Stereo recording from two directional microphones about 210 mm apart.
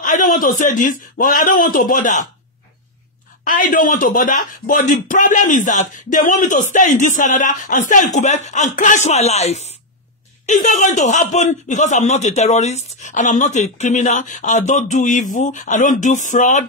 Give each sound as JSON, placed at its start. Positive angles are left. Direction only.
{"t": 0.0, "sound": "a man's voice", "side_deg": 40}
{"t": 3.4, "sound": "speech", "side_deg": 40}